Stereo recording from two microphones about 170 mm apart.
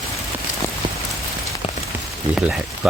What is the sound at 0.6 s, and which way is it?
Rain on surface, 15° left (ahead or behind).